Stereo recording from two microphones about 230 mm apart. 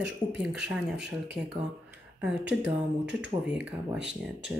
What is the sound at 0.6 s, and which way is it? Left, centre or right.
Speech, centre.